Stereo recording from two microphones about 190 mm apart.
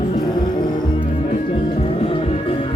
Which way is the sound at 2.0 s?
30° left (ahead or behind).